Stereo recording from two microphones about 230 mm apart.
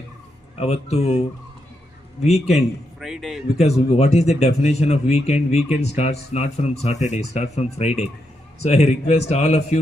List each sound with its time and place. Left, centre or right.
0.6 s speech: left
2.2 s speech: left
3.0 s a man's voice: centre
3.6 s speech: left